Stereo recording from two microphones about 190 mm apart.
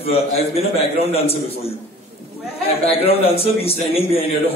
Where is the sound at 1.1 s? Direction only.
30° left (ahead or behind).